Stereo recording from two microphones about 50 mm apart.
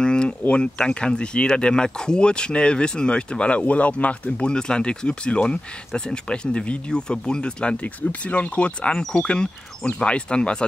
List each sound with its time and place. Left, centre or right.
0.0 s a sound: centre
0.5 s speech: centre
7.8 s speech: left